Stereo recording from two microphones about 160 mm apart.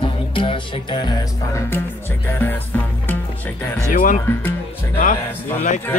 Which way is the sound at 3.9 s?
55° left (ahead or behind).